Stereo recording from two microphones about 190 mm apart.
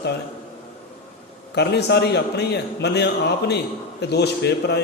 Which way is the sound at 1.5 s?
60° left (ahead or behind).